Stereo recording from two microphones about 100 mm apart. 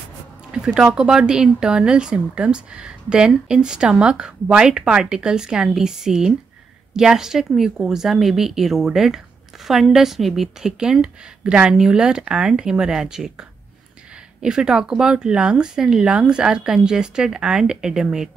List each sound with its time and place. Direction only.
0.5 s speech: 5° right (ahead or behind)